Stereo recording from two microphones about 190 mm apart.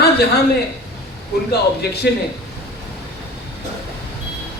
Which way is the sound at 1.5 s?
55° left (ahead or behind).